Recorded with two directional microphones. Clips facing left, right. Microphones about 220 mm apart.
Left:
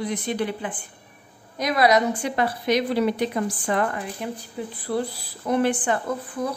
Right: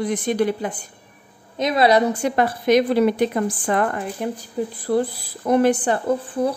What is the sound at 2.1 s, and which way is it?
Speech, 45° right (ahead or behind).